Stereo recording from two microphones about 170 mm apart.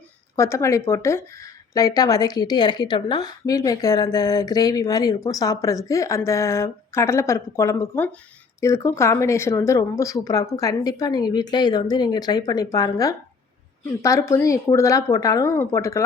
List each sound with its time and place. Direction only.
0.3 s speech: 15° left (ahead or behind)